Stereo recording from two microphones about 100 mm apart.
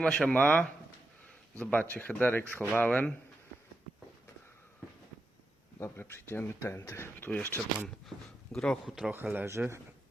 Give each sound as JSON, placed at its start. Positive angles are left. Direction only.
{"t": 0.0, "sound": "a man's voice", "side_deg": 5}
{"t": 5.8, "sound": "speech", "side_deg": 25}
{"t": 7.4, "sound": "speech", "side_deg": -30}
{"t": 8.5, "sound": "speech", "side_deg": 5}
{"t": 9.1, "sound": "speech", "side_deg": -15}